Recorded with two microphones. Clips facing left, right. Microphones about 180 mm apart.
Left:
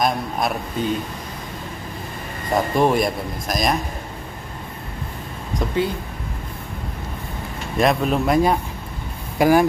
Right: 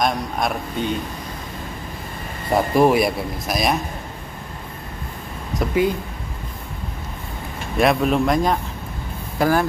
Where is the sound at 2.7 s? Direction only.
5° right (ahead or behind).